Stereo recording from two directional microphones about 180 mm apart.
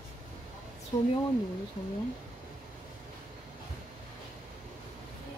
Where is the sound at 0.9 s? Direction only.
20° left (ahead or behind).